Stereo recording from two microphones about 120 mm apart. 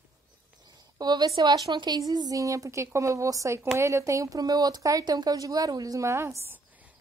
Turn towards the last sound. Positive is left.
turn(degrees=-20)  # may be behind; listen again after turning